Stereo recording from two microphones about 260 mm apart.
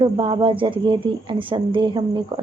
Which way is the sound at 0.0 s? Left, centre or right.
Centre.